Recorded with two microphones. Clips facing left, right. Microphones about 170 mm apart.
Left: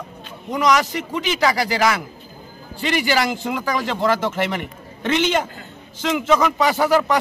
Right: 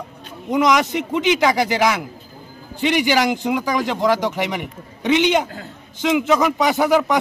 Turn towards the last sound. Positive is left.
turn(degrees=-15)  # may be behind; listen again after turning